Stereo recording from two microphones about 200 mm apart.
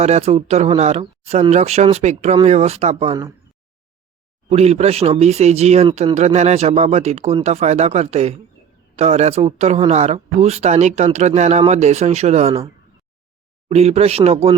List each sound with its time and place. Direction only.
0.0 s speech: 30° right (ahead or behind)
4.4 s speech: 30° right (ahead or behind)
13.7 s speech: 30° right (ahead or behind)